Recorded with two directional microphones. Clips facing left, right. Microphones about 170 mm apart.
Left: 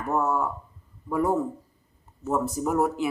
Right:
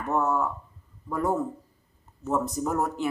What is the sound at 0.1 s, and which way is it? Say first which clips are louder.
Speech: even; 5° left (ahead or behind).